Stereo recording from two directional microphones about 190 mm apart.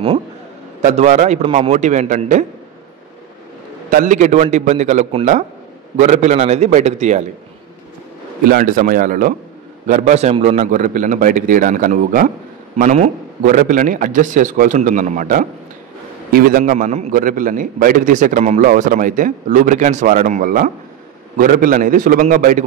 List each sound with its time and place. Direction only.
0.8 s a man's voice: 35° right (ahead or behind)
3.9 s a man's voice: 40° right (ahead or behind)
8.5 s a man's voice: 45° right (ahead or behind)